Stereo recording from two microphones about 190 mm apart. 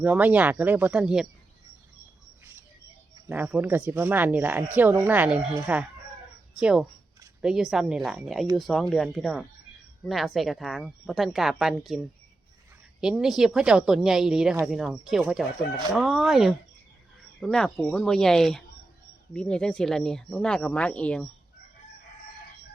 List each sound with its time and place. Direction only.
0.0 s speech: 10° right (ahead or behind)
3.2 s a woman's voice: 10° right (ahead or behind)
13.0 s a woman's voice: 5° right (ahead or behind)